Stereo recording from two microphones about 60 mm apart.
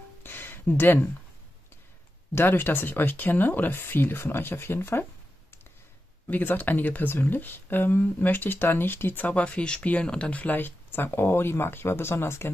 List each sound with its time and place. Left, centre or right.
0.2 s a sound: left
2.3 s speech: left
6.2 s speech: left; by 10.3 s centre
10.3 s speech: left